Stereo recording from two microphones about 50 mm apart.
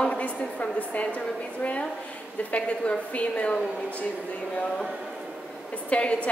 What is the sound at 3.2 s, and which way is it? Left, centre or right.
Speech, left.